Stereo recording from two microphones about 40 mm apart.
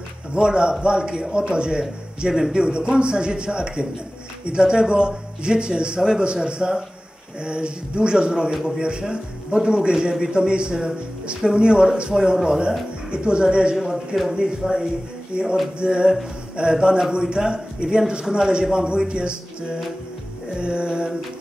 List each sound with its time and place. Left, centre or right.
0.3 s speech: right
13.7 s a sound: centre
14.6 s speech: centre
15.3 s speech: right
20.5 s speech: right